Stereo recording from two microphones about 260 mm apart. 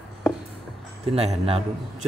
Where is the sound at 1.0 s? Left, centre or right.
Right.